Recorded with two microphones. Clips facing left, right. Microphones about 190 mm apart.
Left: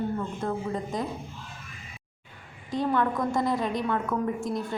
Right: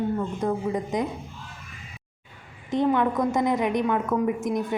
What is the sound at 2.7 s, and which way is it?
A woman's voice, 20° right (ahead or behind).